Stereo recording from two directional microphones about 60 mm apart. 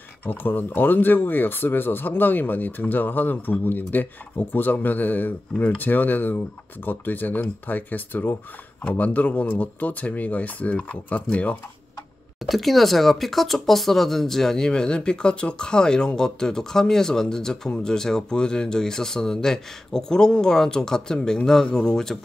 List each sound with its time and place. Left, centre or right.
0.2 s speech: left
12.4 s speech: centre